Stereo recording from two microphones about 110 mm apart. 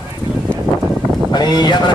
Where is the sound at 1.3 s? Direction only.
40° left (ahead or behind).